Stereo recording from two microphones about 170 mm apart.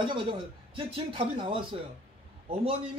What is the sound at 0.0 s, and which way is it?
Speech, 30° right (ahead or behind).